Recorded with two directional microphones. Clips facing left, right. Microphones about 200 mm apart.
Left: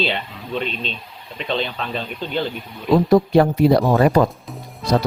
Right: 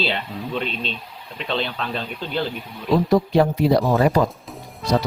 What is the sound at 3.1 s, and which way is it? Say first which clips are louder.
Speech: left 3 dB; 55° left (ahead or behind).